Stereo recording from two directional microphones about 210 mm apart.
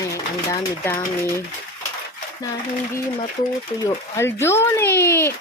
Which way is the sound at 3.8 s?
10° left (ahead or behind).